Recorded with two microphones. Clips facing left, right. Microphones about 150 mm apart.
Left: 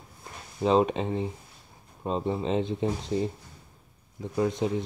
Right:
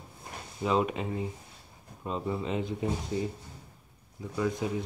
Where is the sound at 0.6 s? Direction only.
25° left (ahead or behind).